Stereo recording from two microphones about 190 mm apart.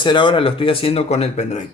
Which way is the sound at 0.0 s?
25° left (ahead or behind).